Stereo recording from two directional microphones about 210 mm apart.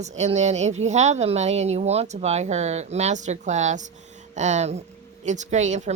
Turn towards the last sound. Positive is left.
turn(degrees=-35)  # may be behind; listen again after turning